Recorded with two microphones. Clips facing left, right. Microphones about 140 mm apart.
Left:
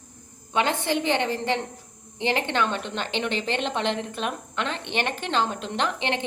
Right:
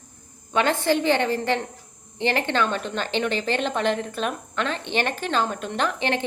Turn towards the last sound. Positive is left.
turn(degrees=20)  # may be behind; listen again after turning